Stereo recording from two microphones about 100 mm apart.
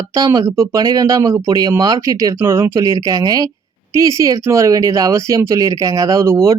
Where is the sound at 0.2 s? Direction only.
35° right (ahead or behind).